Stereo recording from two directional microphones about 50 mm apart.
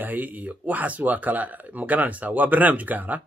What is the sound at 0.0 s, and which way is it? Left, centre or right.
Speech, right.